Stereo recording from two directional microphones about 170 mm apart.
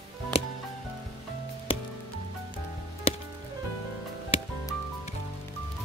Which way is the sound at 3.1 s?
35° left (ahead or behind).